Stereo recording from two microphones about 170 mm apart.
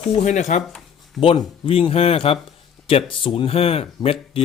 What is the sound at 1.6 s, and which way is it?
A man's voice, 35° left (ahead or behind).